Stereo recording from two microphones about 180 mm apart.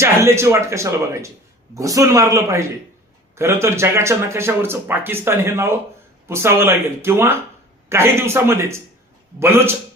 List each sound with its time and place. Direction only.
0.0 s speech: 15° right (ahead or behind)